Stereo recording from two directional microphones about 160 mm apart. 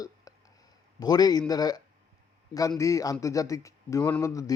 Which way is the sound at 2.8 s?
20° left (ahead or behind).